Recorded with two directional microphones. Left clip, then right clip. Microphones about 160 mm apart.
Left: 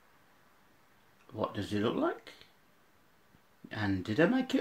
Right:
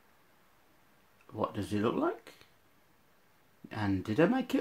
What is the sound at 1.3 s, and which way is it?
Speech, 20° right (ahead or behind).